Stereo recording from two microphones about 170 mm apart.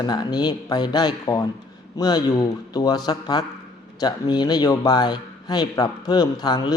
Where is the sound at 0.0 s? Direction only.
25° left (ahead or behind).